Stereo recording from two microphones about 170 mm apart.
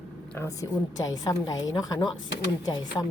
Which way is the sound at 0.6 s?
20° left (ahead or behind).